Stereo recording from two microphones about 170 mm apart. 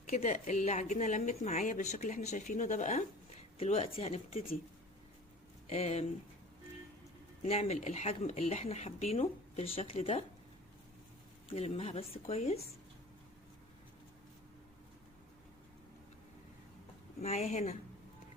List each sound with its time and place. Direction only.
0.0 s a woman's voice: 45° left (ahead or behind)
3.6 s speech: 35° left (ahead or behind)
5.6 s speech: 40° left (ahead or behind)
7.4 s speech: 40° left (ahead or behind)
11.5 s speech: 40° left (ahead or behind)
17.2 s speech: 40° left (ahead or behind)